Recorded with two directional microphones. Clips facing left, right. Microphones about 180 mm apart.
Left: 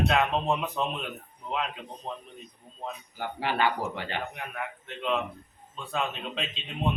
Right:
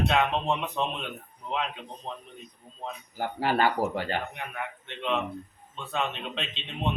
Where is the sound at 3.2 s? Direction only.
40° right (ahead or behind).